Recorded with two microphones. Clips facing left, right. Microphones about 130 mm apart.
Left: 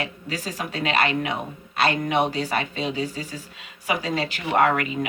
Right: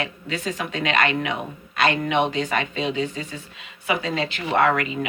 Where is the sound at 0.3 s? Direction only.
35° left (ahead or behind).